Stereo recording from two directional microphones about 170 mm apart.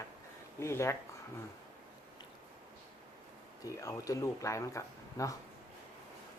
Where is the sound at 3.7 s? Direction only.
20° left (ahead or behind).